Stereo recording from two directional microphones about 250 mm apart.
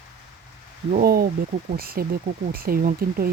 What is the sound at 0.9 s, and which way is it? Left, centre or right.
Speech, right.